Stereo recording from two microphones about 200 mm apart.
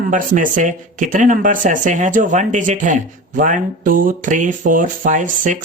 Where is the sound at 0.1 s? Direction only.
40° right (ahead or behind).